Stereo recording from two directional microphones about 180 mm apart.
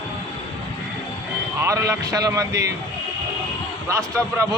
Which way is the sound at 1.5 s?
15° right (ahead or behind).